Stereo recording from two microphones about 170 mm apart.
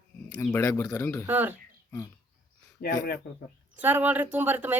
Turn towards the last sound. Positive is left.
turn(degrees=-10)  # may be behind; listen again after turning